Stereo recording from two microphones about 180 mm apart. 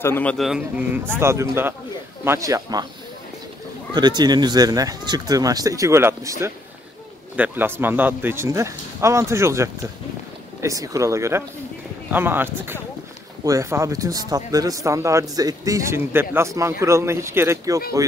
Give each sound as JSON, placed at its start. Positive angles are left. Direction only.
{"t": 0.0, "sound": "a man's voice", "side_deg": 10}
{"t": 0.5, "sound": "speech", "side_deg": -5}
{"t": 3.9, "sound": "speech", "side_deg": -25}